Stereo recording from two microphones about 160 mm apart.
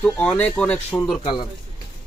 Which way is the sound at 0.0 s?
10° left (ahead or behind).